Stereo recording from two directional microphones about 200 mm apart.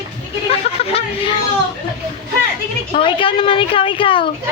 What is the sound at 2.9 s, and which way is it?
A woman's voice, 25° left (ahead or behind).